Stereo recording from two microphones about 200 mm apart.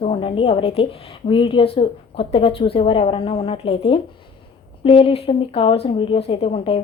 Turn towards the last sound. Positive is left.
turn(degrees=30)  # may be behind; listen again after turning